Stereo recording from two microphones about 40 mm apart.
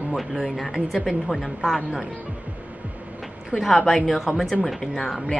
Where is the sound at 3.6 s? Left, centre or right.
Centre.